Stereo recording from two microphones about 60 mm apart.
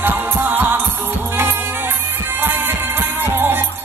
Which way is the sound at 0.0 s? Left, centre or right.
Right.